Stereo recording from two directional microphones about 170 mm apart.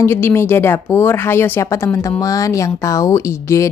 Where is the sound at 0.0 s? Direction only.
15° left (ahead or behind).